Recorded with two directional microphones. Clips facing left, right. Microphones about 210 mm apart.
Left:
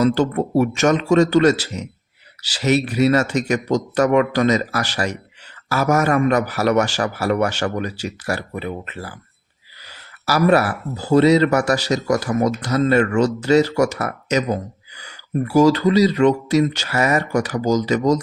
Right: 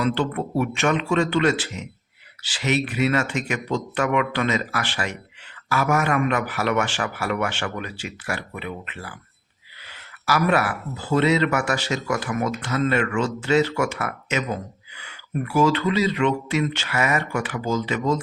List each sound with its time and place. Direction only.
0.0 s speech: 40° left (ahead or behind)